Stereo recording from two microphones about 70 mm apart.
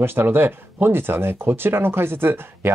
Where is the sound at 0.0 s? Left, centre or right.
Right.